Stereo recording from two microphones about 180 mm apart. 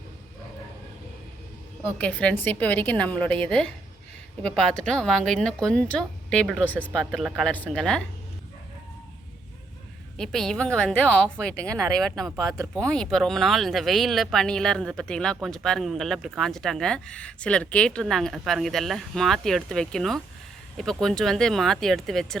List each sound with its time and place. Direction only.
1.8 s a woman's voice: 5° left (ahead or behind)
10.2 s speech: centre (ahead or behind)
12.4 s speech: 20° right (ahead or behind)
12.7 s speech: 5° left (ahead or behind)